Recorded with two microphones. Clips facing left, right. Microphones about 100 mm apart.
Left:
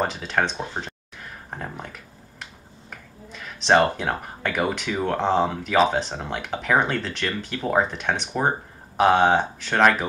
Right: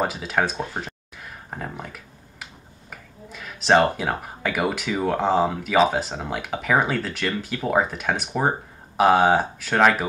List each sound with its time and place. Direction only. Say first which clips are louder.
0.0 s speech: right 1 dB; 5° right (ahead or behind)
0.7 s a sound: even; 5° right (ahead or behind)
2.9 s speech: right 1 dB; 5° right (ahead or behind)